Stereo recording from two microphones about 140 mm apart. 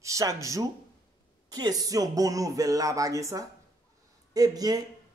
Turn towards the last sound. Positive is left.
turn(degrees=-30)  # may be behind; listen again after turning